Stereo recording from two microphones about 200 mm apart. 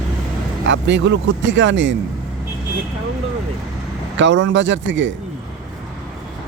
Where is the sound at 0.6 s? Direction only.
65° right (ahead or behind).